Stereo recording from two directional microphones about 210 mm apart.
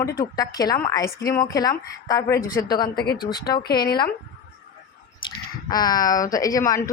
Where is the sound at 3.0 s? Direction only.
50° left (ahead or behind).